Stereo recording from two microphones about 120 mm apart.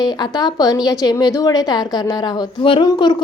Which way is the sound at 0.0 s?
35° left (ahead or behind).